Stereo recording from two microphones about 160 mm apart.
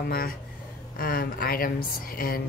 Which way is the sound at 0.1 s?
65° left (ahead or behind).